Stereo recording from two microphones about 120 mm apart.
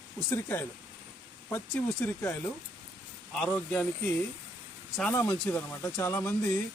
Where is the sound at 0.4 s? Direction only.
20° left (ahead or behind).